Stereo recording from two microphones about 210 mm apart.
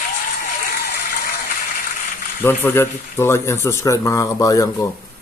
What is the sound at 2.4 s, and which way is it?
Speech, 10° left (ahead or behind).